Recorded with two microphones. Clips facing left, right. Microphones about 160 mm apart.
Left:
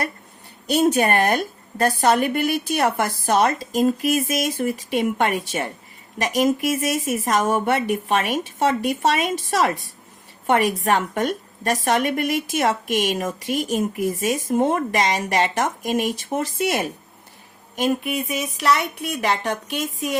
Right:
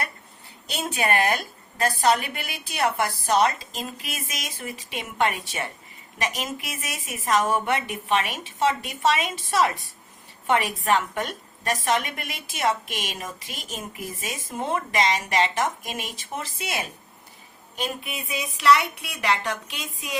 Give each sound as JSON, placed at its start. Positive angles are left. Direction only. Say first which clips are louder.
{"t": 0.7, "sound": "a woman's voice", "louder": "left 8 dB", "side_deg": 45}